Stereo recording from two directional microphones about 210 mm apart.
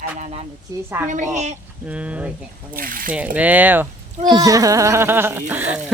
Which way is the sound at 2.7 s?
40° right (ahead or behind).